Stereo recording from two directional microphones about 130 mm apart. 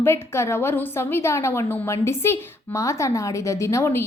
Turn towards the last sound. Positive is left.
turn(degrees=20)  # may be behind; listen again after turning